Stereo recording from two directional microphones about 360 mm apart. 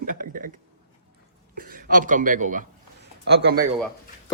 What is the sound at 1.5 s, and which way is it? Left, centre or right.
Speech, right.